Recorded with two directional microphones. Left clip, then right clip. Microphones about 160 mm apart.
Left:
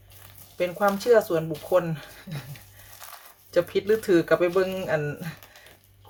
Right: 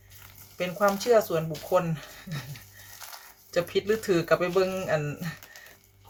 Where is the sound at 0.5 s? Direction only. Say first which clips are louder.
Left 2 dB; 10° left (ahead or behind).